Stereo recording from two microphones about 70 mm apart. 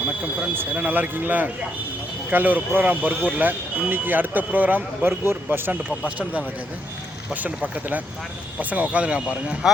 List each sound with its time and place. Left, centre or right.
0.2 s speech: right